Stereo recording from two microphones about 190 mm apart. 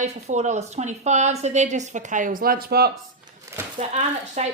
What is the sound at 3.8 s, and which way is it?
Speech, 35° right (ahead or behind).